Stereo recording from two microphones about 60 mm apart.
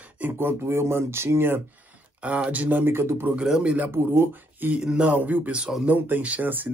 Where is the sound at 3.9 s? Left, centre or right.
Right.